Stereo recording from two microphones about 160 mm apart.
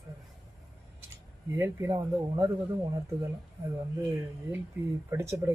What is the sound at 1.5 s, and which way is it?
Speech, 15° right (ahead or behind).